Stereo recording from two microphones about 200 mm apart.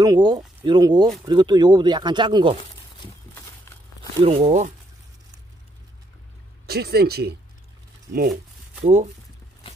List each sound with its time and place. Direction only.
0.0 s speech: 20° right (ahead or behind)
4.4 s speech: 40° right (ahead or behind)
6.6 s speech: 55° right (ahead or behind)
8.8 s speech: 35° right (ahead or behind)